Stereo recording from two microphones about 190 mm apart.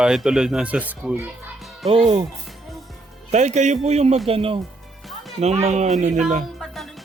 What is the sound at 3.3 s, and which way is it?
Speech, 35° right (ahead or behind).